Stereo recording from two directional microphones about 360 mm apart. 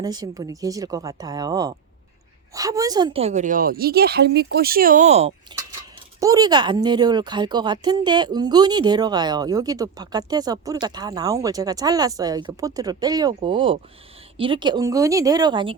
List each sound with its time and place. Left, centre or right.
0.0 s a woman's voice: centre